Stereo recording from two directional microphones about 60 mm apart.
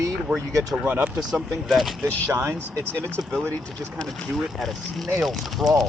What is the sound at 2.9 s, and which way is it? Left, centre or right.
Speech, left.